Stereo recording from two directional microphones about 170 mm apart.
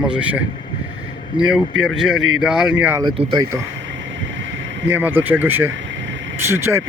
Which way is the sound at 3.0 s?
25° right (ahead or behind).